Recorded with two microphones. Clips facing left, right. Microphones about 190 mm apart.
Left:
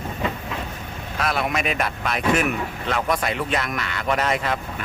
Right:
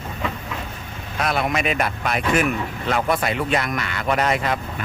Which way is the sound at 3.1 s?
25° right (ahead or behind).